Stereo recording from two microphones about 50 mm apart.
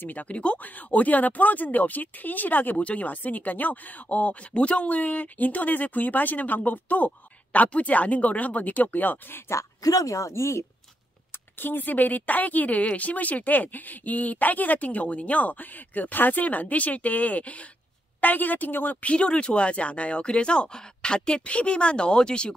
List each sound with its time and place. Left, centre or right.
0.1 s speech: left
10.2 s speech: left
11.5 s speech: left; by 22.5 s centre